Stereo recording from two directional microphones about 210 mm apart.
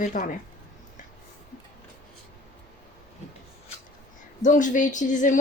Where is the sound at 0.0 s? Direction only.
40° left (ahead or behind).